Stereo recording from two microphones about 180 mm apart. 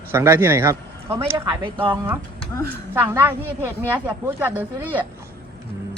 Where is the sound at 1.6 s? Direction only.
25° right (ahead or behind).